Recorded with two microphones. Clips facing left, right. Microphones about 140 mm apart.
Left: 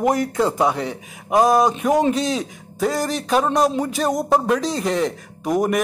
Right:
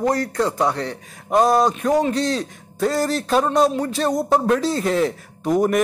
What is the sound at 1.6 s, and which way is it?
Speech, 20° left (ahead or behind).